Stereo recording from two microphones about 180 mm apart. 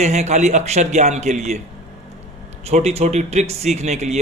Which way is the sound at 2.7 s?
40° right (ahead or behind).